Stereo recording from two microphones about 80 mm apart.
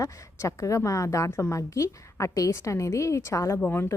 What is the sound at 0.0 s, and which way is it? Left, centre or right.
A woman's voice, left.